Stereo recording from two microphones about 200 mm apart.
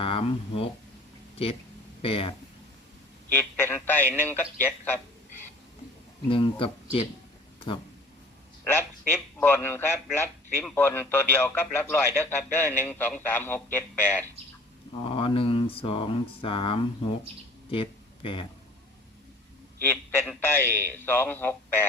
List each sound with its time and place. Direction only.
0.0 s speech: 25° left (ahead or behind)
2.0 s speech: 30° left (ahead or behind)
3.3 s speech: 10° left (ahead or behind)
4.6 s a sound: 10° left (ahead or behind)
6.2 s speech: 25° left (ahead or behind)
7.7 s speech: 25° left (ahead or behind)
8.6 s a man's voice: 10° left (ahead or behind)
15.0 s speech: 25° left (ahead or behind)
17.7 s a sound: 25° left (ahead or behind)
19.8 s speech: 10° left (ahead or behind)